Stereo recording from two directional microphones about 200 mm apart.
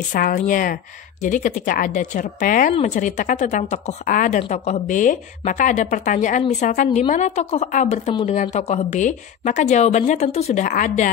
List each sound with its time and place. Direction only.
0.1 s a woman's voice: 40° left (ahead or behind)